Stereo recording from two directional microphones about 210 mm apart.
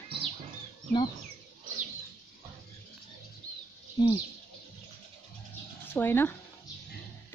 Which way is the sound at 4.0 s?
20° left (ahead or behind).